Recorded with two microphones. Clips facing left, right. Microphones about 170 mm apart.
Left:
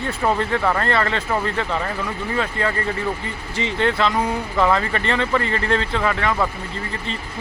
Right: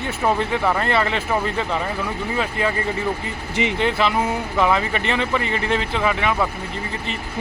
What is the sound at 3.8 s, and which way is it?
Speech, 5° right (ahead or behind).